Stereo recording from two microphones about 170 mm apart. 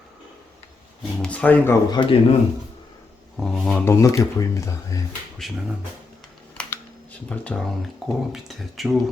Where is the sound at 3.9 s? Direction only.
20° left (ahead or behind).